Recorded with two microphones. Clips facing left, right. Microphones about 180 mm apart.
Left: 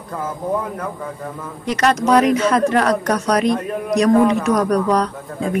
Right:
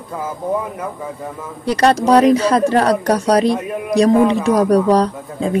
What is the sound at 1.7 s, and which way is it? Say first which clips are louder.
Speech: right 3 dB; 30° right (ahead or behind).